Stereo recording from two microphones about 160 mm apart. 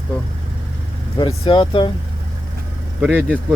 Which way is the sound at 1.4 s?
30° left (ahead or behind).